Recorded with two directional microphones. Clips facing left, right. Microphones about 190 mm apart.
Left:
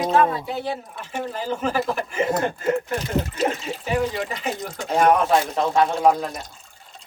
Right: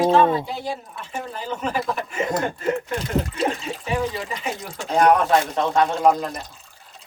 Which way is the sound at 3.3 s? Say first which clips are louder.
Even; centre (ahead or behind).